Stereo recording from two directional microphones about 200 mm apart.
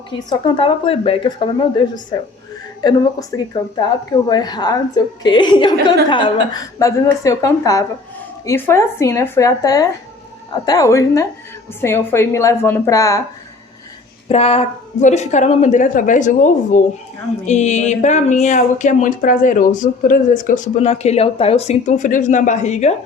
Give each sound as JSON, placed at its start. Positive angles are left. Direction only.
{"t": 0.1, "sound": "a woman's voice", "side_deg": 25}
{"t": 2.8, "sound": "a woman's voice", "side_deg": 20}
{"t": 14.3, "sound": "speech", "side_deg": 30}